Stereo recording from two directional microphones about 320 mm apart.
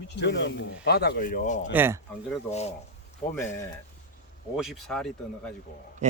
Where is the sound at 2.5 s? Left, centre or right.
Left.